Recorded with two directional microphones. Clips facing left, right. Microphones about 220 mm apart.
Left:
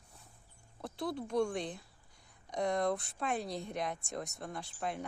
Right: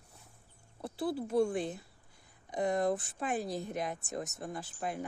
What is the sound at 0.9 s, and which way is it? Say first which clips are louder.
Speech: right 3 dB; 5° right (ahead or behind).